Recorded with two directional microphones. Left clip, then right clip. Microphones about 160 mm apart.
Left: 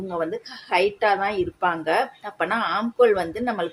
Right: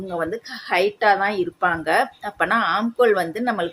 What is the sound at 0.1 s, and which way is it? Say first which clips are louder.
A woman's voice: right 2 dB; 25° right (ahead or behind).